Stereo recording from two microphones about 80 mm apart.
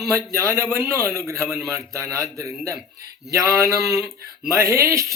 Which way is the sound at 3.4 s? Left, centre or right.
Left.